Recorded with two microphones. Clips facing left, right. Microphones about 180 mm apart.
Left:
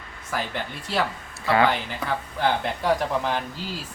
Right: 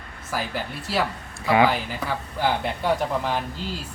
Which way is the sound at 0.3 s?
5° right (ahead or behind).